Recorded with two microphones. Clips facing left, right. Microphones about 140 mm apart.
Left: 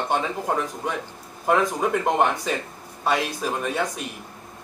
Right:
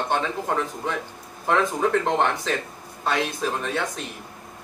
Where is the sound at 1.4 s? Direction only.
10° left (ahead or behind).